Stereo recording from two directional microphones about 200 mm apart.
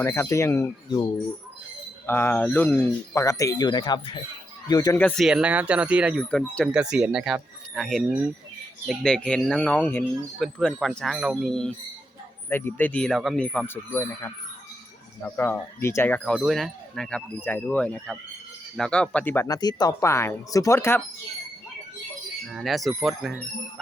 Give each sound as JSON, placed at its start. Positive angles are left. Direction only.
{"t": 0.0, "sound": "speech", "side_deg": 15}
{"t": 2.0, "sound": "speech", "side_deg": 10}
{"t": 4.9, "sound": "speech", "side_deg": 5}
{"t": 12.5, "sound": "speech", "side_deg": 10}
{"t": 22.5, "sound": "speech", "side_deg": 0}